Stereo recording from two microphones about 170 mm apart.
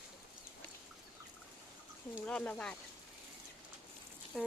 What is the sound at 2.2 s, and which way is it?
Speech, 10° left (ahead or behind).